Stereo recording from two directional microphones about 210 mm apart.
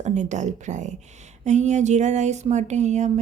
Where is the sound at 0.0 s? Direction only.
35° right (ahead or behind).